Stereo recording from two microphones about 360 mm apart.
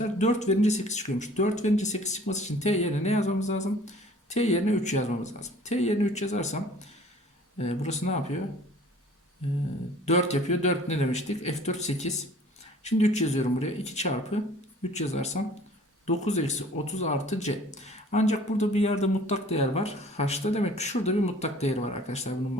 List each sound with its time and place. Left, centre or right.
0.2 s speech: centre
10.1 s speech: centre